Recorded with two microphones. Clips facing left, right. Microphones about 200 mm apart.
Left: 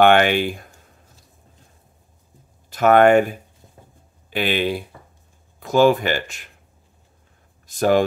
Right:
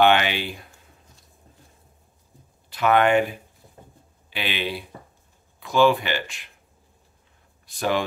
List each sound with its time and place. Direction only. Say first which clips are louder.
0.0 s speech: left 5 dB; 50° left (ahead or behind)
2.7 s speech: left 6 dB; 45° left (ahead or behind)
7.6 s speech: left 7 dB; 45° left (ahead or behind)